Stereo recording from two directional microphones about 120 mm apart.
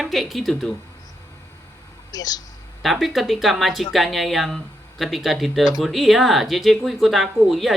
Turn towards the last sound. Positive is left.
turn(degrees=0)  # may be behind; listen again after turning